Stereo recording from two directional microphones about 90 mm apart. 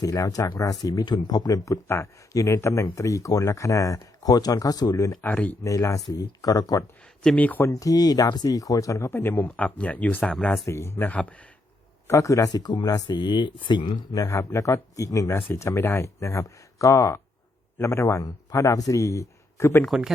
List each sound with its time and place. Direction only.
0.0 s speech: 40° left (ahead or behind)
5.2 s speech: 15° left (ahead or behind)
5.6 s speech: 35° left (ahead or behind)
7.3 s speech: 20° left (ahead or behind)
7.7 s speech: 40° left (ahead or behind); by 10.3 s 15° left (ahead or behind)
10.7 s speech: 30° left (ahead or behind)
12.0 s speech: 35° left (ahead or behind)